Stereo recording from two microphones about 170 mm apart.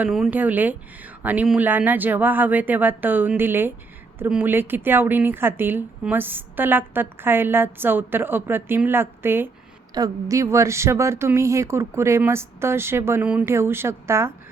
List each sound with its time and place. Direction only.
0.0 s a woman's voice: 5° right (ahead or behind)